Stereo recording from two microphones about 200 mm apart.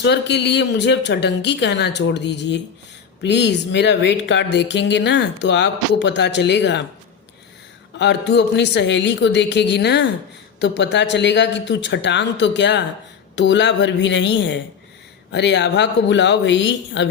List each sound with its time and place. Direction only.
0.0 s speech: 60° left (ahead or behind)
7.9 s speech: 60° left (ahead or behind)